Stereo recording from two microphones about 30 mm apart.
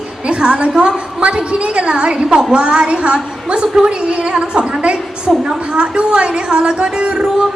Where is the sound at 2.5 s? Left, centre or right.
Right.